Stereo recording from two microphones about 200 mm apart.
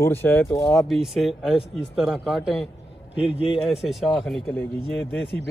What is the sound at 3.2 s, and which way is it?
Speech, 25° left (ahead or behind).